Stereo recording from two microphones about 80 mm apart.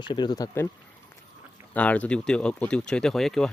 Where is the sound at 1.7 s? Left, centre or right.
Centre.